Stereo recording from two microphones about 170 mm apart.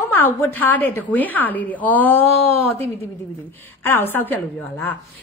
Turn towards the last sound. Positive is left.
turn(degrees=10)  # may be behind; listen again after turning